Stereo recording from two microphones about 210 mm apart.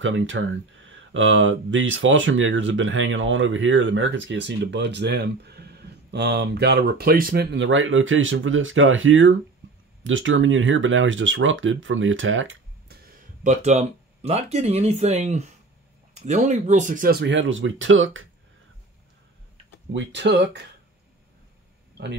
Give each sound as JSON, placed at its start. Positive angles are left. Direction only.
{"t": 0.0, "sound": "speech", "side_deg": -65}
{"t": 7.5, "sound": "speech", "side_deg": -65}
{"t": 19.9, "sound": "speech", "side_deg": -60}
{"t": 22.0, "sound": "speech", "side_deg": -55}